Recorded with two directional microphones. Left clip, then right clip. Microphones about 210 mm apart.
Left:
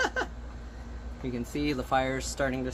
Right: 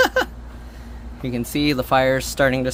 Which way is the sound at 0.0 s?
60° right (ahead or behind).